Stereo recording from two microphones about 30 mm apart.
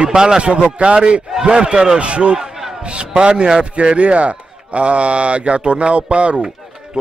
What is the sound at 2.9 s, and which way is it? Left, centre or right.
Speech, right.